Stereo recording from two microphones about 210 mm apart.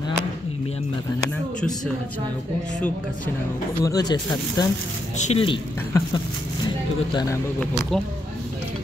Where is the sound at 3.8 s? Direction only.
20° left (ahead or behind).